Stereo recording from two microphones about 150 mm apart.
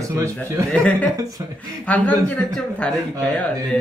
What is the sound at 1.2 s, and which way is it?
Speech, 25° right (ahead or behind).